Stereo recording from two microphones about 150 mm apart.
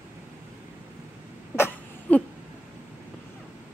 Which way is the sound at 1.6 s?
10° left (ahead or behind).